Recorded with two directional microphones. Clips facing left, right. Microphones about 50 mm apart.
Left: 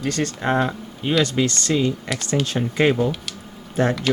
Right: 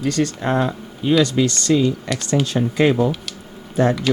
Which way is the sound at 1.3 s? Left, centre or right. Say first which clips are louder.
Right 4 dB; left.